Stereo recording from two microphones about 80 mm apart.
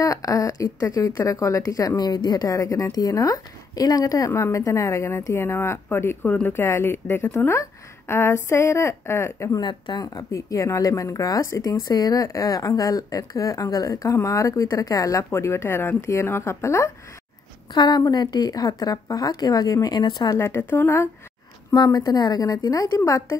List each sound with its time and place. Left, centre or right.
0.0 s a woman's voice: left
9.6 s speech: left
10.0 s speech: left
17.7 s speech: left
20.3 s a woman's voice: left
21.7 s speech: left